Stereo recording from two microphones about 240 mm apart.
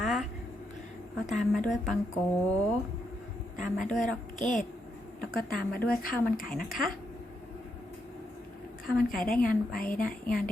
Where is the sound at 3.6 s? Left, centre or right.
Left.